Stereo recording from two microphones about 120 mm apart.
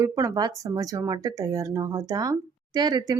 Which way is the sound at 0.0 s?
30° right (ahead or behind).